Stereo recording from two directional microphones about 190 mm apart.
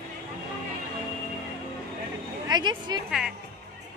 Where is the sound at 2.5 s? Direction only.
25° right (ahead or behind).